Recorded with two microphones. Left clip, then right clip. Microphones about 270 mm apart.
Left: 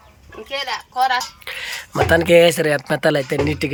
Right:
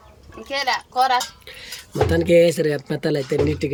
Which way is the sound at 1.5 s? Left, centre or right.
Centre.